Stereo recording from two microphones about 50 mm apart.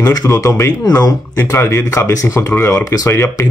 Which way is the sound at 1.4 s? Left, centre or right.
Left.